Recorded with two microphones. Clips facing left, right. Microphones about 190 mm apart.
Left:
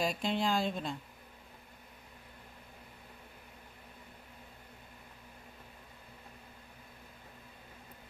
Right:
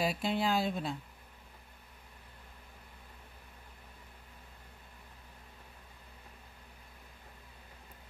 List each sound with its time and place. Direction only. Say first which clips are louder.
0.0 s speech: right 1 dB; 5° right (ahead or behind)